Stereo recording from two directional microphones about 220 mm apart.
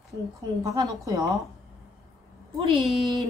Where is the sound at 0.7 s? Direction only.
15° right (ahead or behind).